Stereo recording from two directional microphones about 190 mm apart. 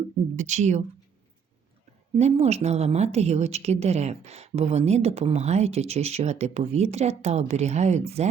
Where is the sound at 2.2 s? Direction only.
35° right (ahead or behind).